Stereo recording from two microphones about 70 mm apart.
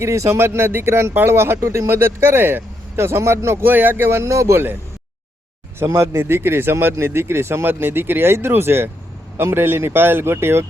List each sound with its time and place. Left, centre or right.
0.0 s speech: right
5.8 s speech: right